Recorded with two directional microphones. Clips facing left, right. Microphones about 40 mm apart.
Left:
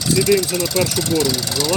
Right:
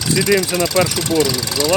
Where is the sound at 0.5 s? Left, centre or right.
Right.